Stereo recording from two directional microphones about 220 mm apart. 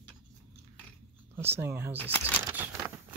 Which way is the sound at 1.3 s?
10° right (ahead or behind).